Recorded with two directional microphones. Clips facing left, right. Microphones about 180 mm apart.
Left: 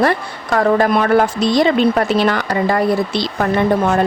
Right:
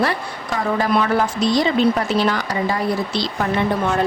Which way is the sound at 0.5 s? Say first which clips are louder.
Left 5 dB; 55° left (ahead or behind).